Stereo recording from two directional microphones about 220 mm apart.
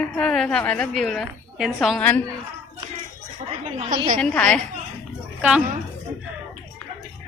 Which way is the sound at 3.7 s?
25° right (ahead or behind).